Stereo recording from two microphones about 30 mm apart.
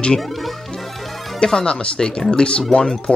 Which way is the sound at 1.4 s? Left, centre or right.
Left.